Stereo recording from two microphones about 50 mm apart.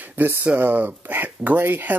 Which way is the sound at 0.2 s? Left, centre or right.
Right.